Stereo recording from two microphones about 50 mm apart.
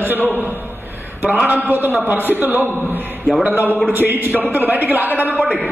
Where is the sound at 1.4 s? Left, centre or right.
Right.